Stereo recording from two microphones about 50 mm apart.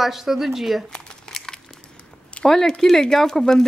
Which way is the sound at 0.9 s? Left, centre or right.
Centre.